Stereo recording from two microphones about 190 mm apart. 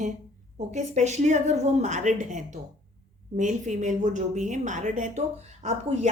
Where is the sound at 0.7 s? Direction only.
40° right (ahead or behind).